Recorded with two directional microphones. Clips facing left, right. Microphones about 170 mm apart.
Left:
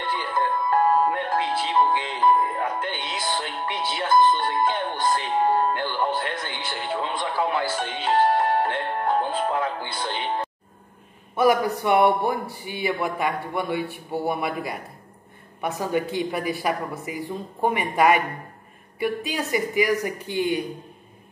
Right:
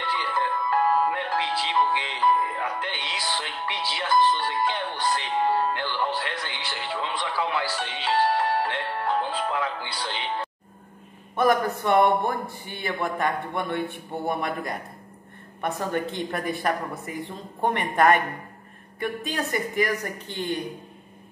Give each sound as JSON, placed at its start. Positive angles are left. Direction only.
{"t": 0.0, "sound": "music", "side_deg": 50}
{"t": 11.3, "sound": "speech", "side_deg": 10}